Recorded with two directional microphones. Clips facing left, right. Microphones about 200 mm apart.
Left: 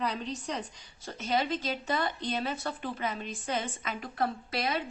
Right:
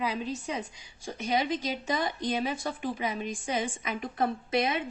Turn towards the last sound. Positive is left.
turn(degrees=-20)  # may be behind; listen again after turning